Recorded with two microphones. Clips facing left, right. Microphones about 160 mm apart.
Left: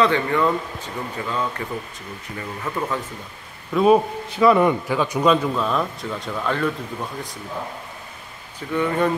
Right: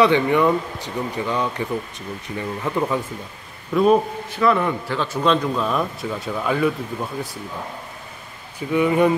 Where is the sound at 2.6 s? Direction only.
15° right (ahead or behind).